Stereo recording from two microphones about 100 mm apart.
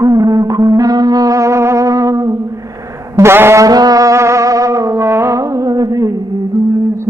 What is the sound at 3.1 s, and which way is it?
Brass instrument, 25° right (ahead or behind).